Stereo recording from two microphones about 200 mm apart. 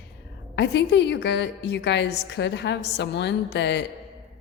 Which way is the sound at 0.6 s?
60° left (ahead or behind).